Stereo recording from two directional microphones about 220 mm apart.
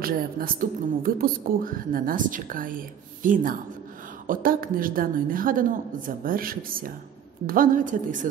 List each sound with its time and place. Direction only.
0.0 s speech: 40° right (ahead or behind)